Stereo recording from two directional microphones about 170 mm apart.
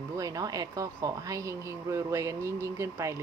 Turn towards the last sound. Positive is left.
turn(degrees=-15)  # may be behind; listen again after turning